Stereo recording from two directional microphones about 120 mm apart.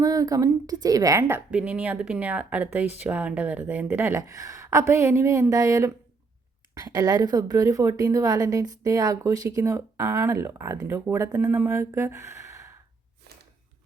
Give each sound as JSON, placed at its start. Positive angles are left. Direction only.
{"t": 0.0, "sound": "a woman's voice", "side_deg": -30}
{"t": 1.3, "sound": "speech", "side_deg": -10}
{"t": 4.2, "sound": "a woman's voice", "side_deg": -25}